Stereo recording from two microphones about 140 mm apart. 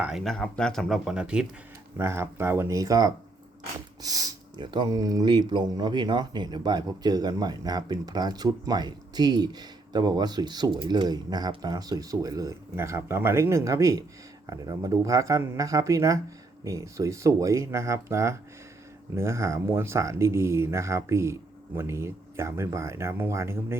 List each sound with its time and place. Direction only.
0.0 s speech: centre (ahead or behind); by 23.7 s 20° right (ahead or behind)